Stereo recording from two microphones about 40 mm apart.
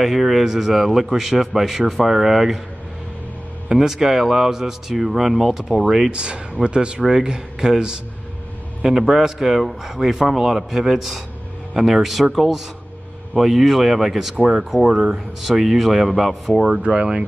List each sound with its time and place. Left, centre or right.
0.0 s a man's voice: centre
3.6 s speech: centre
6.0 s speech: right
7.0 s a man's voice: centre
15.4 s a man's voice: centre
16.8 s speech: right